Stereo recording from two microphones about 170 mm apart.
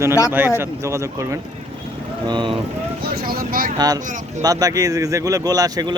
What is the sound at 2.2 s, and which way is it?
Speech, 30° right (ahead or behind).